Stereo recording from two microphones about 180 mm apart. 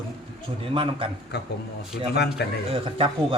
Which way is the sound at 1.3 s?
65° left (ahead or behind).